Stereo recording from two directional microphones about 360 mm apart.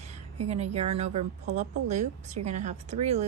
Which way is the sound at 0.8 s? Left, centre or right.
Centre.